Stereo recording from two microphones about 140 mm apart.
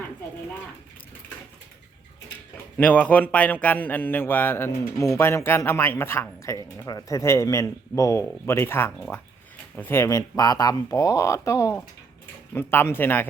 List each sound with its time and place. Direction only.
2.7 s speech: 10° left (ahead or behind)